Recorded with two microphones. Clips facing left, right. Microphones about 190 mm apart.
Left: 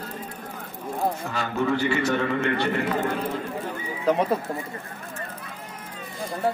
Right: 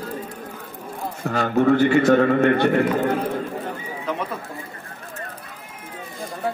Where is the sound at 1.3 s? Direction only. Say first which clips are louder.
Right 13 dB; 55° right (ahead or behind).